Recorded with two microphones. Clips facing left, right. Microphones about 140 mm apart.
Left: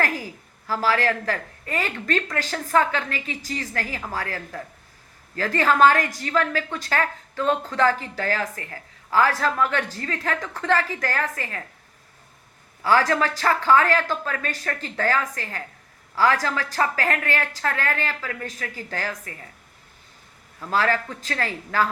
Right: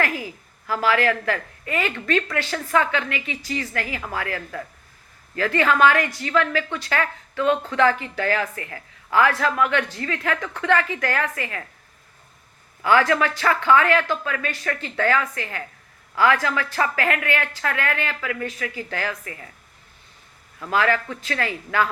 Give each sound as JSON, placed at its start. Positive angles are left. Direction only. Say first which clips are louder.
{"t": 0.0, "sound": "a sound", "louder": "right 1 dB", "side_deg": 40}
{"t": 0.7, "sound": "speech", "louder": "right 2 dB", "side_deg": 35}
{"t": 12.8, "sound": "speech", "louder": "right 1 dB", "side_deg": 35}
{"t": 20.7, "sound": "speech", "louder": "right 1 dB", "side_deg": 35}